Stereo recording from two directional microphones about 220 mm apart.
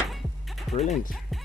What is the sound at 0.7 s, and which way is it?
Speech, 30° left (ahead or behind).